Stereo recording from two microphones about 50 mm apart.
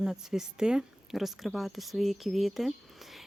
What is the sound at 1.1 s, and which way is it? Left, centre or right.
Speech, centre.